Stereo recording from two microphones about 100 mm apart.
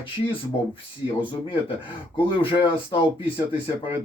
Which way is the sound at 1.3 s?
55° left (ahead or behind).